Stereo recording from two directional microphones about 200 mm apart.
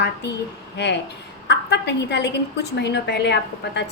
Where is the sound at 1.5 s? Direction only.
60° left (ahead or behind).